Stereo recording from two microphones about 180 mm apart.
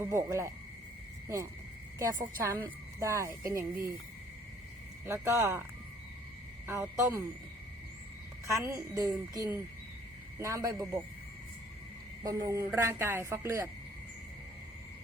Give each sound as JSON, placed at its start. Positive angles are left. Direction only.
{"t": 0.0, "sound": "a woman's voice", "side_deg": -15}
{"t": 2.0, "sound": "a woman's voice", "side_deg": -15}
{"t": 5.0, "sound": "a woman's voice", "side_deg": -15}
{"t": 6.7, "sound": "a woman's voice", "side_deg": -15}
{"t": 8.4, "sound": "a woman's voice", "side_deg": -15}
{"t": 12.2, "sound": "a woman's voice", "side_deg": -20}